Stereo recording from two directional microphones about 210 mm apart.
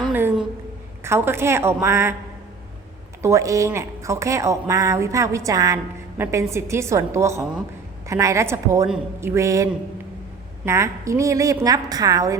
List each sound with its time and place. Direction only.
0.0 s a sound: 10° right (ahead or behind)
1.0 s speech: 10° right (ahead or behind)
3.2 s speech: 15° right (ahead or behind)
10.7 s speech: 15° right (ahead or behind)